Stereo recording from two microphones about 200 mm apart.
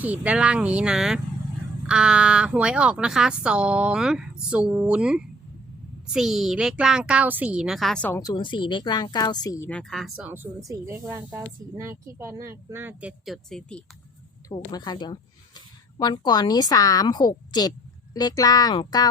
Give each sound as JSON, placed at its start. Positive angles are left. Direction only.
{"t": 0.0, "sound": "speech", "side_deg": -5}
{"t": 8.2, "sound": "speech", "side_deg": 20}
{"t": 9.6, "sound": "speech", "side_deg": 5}
{"t": 14.5, "sound": "a woman's voice", "side_deg": 20}